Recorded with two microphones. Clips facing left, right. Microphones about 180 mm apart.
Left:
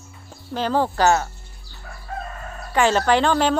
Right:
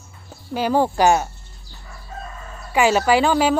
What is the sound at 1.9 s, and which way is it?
Chicken, 60° left (ahead or behind).